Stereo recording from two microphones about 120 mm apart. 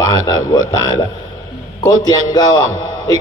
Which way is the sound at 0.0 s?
30° left (ahead or behind).